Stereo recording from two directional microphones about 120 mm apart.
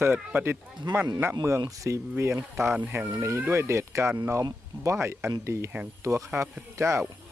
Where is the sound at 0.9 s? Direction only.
35° right (ahead or behind).